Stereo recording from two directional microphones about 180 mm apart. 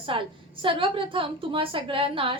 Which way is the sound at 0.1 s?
30° right (ahead or behind).